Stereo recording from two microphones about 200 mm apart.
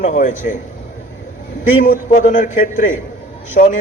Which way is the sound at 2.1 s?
40° left (ahead or behind).